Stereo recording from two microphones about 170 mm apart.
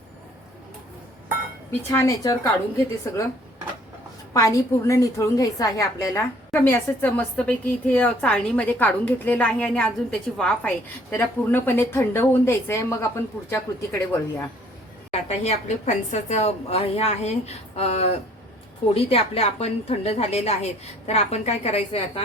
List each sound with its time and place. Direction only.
1.9 s a woman's voice: 15° left (ahead or behind)
4.4 s a woman's voice: 20° left (ahead or behind)
15.3 s a woman's voice: 40° left (ahead or behind)